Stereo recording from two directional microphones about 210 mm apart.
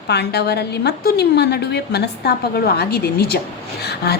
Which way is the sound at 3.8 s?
50° left (ahead or behind).